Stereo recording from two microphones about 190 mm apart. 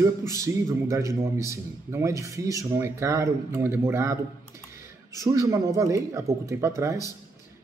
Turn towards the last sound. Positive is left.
turn(degrees=-15)  # may be behind; listen again after turning